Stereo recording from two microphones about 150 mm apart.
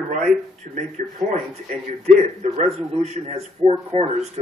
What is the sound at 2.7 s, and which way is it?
Speech, 45° right (ahead or behind).